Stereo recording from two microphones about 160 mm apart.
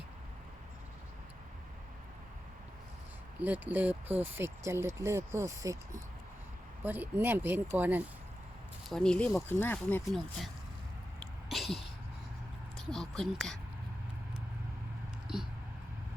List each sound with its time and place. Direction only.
3.4 s speech: 10° right (ahead or behind)
6.8 s speech: 10° right (ahead or behind)
8.9 s speech: 5° left (ahead or behind)
10.1 s speech: centre (ahead or behind)
11.2 s sneeze: centre (ahead or behind)
12.7 s speech: 5° left (ahead or behind)